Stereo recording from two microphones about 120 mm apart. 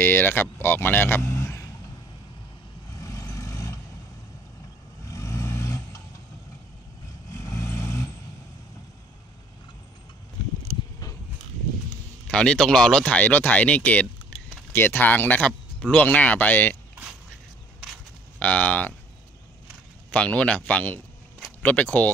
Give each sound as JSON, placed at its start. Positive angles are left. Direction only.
{"t": 0.0, "sound": "speech", "side_deg": 15}
{"t": 2.9, "sound": "vehicle", "side_deg": 30}
{"t": 5.0, "sound": "vehicle", "side_deg": 25}
{"t": 7.2, "sound": "vehicle", "side_deg": 25}
{"t": 12.3, "sound": "speech", "side_deg": 10}
{"t": 18.4, "sound": "speech", "side_deg": 10}
{"t": 20.1, "sound": "speech", "side_deg": 10}